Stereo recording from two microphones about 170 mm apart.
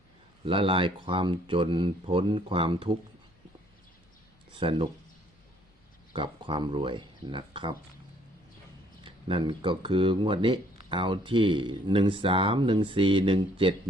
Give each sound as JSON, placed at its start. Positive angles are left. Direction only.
{"t": 0.4, "sound": "speech", "side_deg": -30}
{"t": 4.5, "sound": "speech", "side_deg": -30}
{"t": 6.1, "sound": "speech", "side_deg": -30}
{"t": 9.0, "sound": "speech", "side_deg": -30}